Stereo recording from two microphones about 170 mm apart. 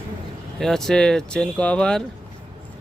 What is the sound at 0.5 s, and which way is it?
Speech, centre (ahead or behind).